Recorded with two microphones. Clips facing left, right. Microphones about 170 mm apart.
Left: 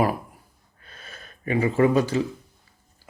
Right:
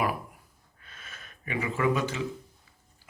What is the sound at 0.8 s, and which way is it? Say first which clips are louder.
Gasp: left 4 dB; 35° left (ahead or behind).